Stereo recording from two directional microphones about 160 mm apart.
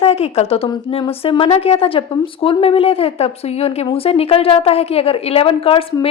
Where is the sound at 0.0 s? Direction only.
40° left (ahead or behind).